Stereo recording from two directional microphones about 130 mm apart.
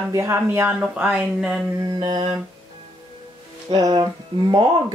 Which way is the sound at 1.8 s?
35° right (ahead or behind).